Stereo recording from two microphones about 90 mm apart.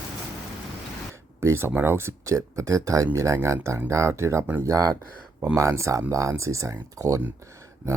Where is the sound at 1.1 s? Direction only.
30° right (ahead or behind).